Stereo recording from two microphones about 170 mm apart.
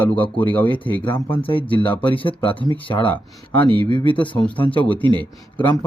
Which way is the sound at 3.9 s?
30° left (ahead or behind).